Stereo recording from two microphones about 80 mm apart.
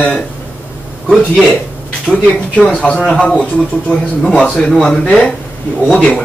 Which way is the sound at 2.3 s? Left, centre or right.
Centre.